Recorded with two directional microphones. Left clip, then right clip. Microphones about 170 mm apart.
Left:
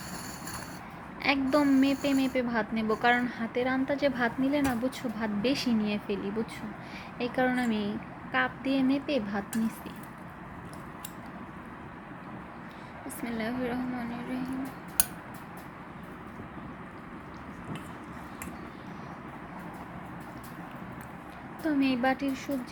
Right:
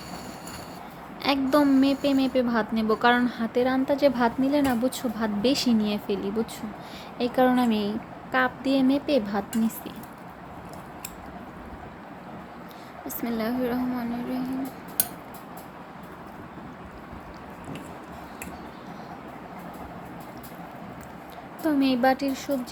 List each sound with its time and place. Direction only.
1.2 s a woman's voice: 25° right (ahead or behind)
13.2 s a woman's voice: 25° right (ahead or behind)
21.6 s a woman's voice: 25° right (ahead or behind)